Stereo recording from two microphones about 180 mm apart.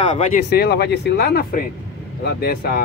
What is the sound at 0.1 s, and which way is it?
Speech, 40° left (ahead or behind).